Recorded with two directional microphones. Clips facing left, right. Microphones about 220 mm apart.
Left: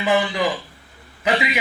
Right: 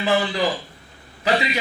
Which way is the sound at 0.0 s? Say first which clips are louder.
Left 1 dB; 15° left (ahead or behind).